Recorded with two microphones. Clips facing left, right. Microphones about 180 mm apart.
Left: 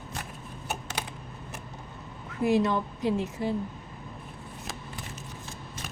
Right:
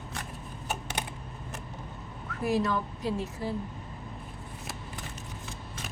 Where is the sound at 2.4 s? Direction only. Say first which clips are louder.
Left 4 dB; 20° left (ahead or behind).